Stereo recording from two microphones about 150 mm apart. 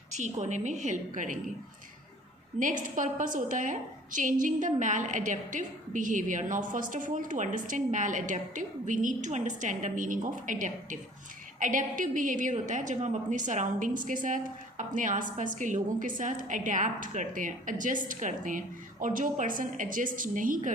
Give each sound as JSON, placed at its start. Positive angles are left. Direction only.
{"t": 0.1, "sound": "a woman's voice", "side_deg": -50}
{"t": 2.8, "sound": "a woman's voice", "side_deg": -60}